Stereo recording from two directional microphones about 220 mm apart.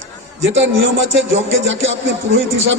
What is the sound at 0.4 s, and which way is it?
A man's voice, 60° right (ahead or behind).